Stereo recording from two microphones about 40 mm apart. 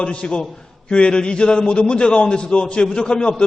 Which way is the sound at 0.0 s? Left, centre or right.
Left.